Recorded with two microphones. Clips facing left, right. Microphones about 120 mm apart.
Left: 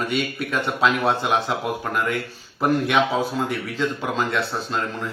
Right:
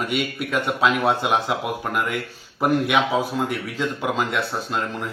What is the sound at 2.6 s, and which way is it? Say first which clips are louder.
Speech: even; 10° right (ahead or behind).